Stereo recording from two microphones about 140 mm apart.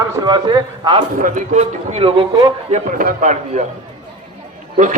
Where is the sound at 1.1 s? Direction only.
65° right (ahead or behind); by 2.2 s 40° right (ahead or behind).